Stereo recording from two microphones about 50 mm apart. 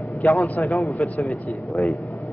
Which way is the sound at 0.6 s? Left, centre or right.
Left.